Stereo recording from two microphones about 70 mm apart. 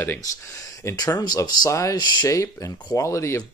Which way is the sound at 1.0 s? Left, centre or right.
Left.